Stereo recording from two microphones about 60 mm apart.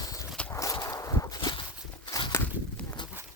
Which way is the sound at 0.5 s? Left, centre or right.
Left.